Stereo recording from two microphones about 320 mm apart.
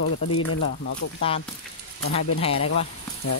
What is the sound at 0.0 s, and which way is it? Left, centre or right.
Speech, left.